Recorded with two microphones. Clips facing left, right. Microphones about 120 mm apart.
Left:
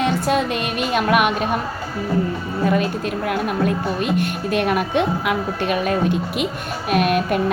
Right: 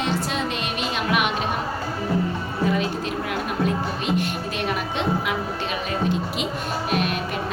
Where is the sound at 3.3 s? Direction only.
55° left (ahead or behind).